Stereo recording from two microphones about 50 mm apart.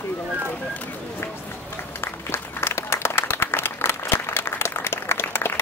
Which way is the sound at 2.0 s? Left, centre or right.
Left.